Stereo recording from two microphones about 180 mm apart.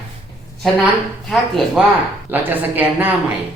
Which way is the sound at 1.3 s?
Centre (ahead or behind).